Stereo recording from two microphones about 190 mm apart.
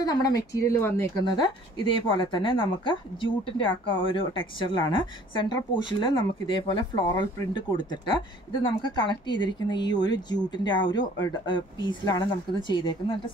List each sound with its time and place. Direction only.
0.0 s speech: 20° left (ahead or behind)
1.2 s speech: 25° left (ahead or behind)